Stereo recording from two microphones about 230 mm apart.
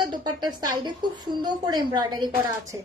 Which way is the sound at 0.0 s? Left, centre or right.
Centre.